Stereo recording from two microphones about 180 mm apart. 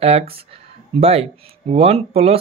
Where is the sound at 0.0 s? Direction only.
35° right (ahead or behind).